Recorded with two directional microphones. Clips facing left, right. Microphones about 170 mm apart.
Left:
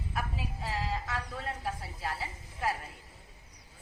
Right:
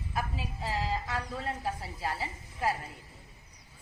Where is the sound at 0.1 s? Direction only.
Centre (ahead or behind).